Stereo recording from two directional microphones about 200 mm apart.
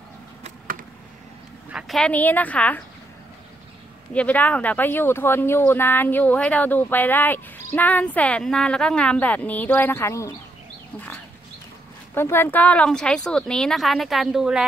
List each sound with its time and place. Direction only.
0.4 s a sound: 40° right (ahead or behind)
1.7 s speech: centre (ahead or behind)
4.1 s speech: 5° left (ahead or behind)
12.1 s speech: 10° left (ahead or behind)